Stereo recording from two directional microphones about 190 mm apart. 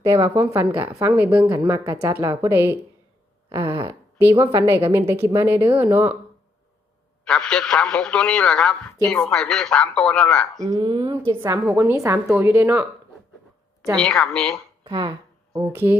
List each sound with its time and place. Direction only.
0.0 s a woman's voice: 15° right (ahead or behind)
7.3 s a man's voice: 5° left (ahead or behind)
10.6 s a woman's voice: 15° right (ahead or behind)
14.2 s a man's voice: centre (ahead or behind)
14.8 s speech: 20° right (ahead or behind)
15.5 s a woman's voice: 10° right (ahead or behind)